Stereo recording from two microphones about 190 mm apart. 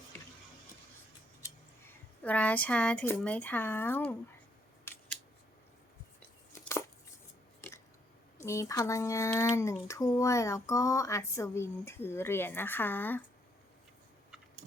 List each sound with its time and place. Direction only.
2.2 s speech: 10° left (ahead or behind)
8.4 s speech: 15° left (ahead or behind)